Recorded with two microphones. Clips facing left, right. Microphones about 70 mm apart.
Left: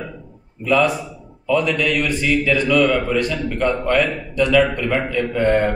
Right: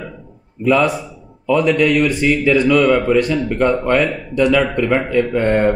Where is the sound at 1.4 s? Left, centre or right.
Right.